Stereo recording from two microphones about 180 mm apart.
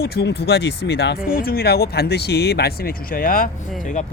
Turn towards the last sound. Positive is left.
turn(degrees=50)  # may be behind; listen again after turning